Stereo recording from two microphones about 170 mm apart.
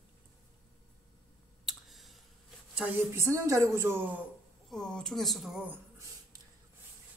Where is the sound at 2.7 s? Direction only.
10° right (ahead or behind).